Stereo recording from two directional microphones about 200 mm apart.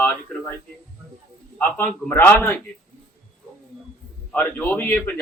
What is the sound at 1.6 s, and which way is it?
Speech, 10° left (ahead or behind).